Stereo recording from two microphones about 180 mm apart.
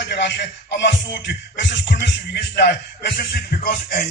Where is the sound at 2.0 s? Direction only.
75° left (ahead or behind).